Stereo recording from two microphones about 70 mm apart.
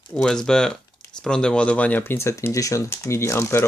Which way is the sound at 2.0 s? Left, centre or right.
Left.